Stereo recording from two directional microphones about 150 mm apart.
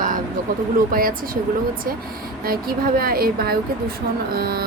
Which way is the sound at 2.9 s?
80° right.